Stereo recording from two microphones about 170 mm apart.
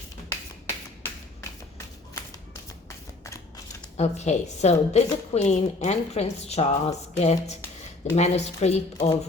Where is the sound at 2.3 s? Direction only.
15° left (ahead or behind).